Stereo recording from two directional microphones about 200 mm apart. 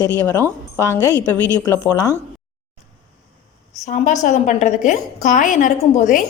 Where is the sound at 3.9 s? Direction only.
35° left (ahead or behind).